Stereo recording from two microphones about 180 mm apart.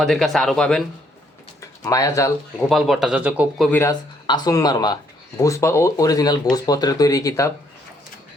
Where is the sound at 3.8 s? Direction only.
20° left (ahead or behind).